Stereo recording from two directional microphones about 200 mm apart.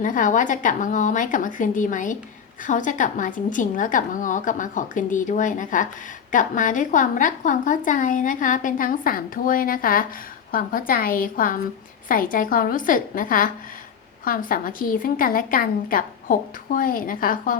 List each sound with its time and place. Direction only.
0.0 s a woman's voice: 40° left (ahead or behind)